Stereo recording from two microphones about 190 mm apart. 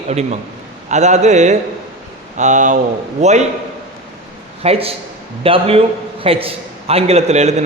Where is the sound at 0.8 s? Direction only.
40° right (ahead or behind).